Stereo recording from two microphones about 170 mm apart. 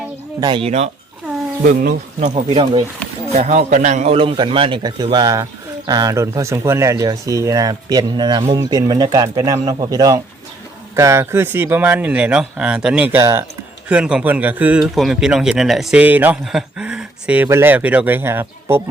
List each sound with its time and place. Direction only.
0.3 s a man's voice: 25° right (ahead or behind)
1.6 s speech: 50° right (ahead or behind)
2.5 s speech: 30° right (ahead or behind)
3.3 s a man's voice: 45° right (ahead or behind); by 18.8 s 15° right (ahead or behind)